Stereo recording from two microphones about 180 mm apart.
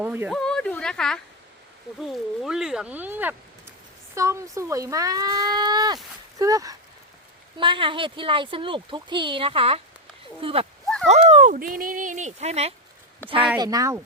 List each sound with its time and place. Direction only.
0.0 s speech: 10° right (ahead or behind)
0.3 s a sound: 5° left (ahead or behind)
2.0 s speech: centre (ahead or behind); by 10.7 s 30° right (ahead or behind)
11.1 s fowl: 40° right (ahead or behind)
13.6 s speech: 20° right (ahead or behind)